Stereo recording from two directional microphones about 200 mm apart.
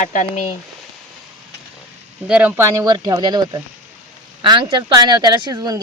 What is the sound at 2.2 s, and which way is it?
Speech, 5° right (ahead or behind).